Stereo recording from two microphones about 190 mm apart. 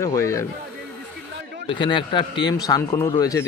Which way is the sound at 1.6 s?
25° left (ahead or behind).